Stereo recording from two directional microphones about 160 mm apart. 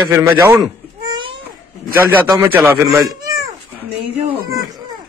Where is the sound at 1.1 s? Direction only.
30° right (ahead or behind).